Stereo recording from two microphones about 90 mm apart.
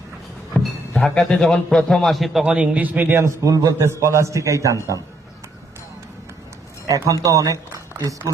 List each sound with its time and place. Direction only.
0.5 s a sound: 20° left (ahead or behind)
1.0 s a man's voice: 5° left (ahead or behind)
2.7 s a man's voice: 20° right (ahead or behind)
3.4 s a man's voice: 40° right (ahead or behind)
6.8 s speech: 40° right (ahead or behind)